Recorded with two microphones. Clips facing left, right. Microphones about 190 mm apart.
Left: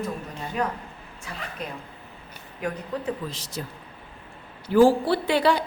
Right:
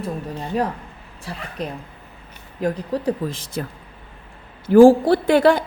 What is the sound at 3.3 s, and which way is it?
Speech, 55° right (ahead or behind).